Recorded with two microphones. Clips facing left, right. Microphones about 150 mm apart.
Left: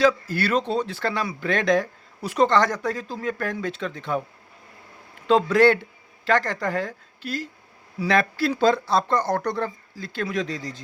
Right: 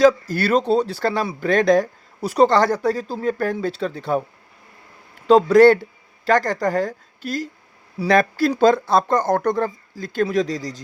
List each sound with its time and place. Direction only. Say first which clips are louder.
0.0 s speech: right 5 dB; 40° right (ahead or behind)
5.3 s speech: right 6 dB; 40° right (ahead or behind)